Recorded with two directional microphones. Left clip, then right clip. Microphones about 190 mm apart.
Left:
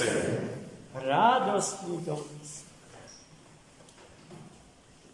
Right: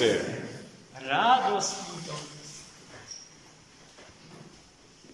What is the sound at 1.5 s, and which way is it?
Speech, centre (ahead or behind).